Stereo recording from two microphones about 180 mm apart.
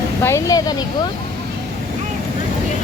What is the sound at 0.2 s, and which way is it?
Speech, 15° left (ahead or behind).